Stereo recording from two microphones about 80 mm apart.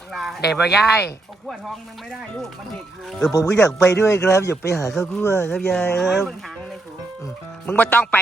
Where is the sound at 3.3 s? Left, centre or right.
Left.